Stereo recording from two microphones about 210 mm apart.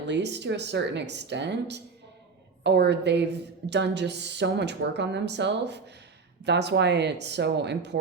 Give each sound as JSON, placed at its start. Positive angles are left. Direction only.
{"t": 0.0, "sound": "a woman's voice", "side_deg": -55}